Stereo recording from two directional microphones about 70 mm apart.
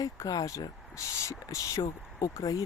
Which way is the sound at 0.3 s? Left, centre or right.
Left.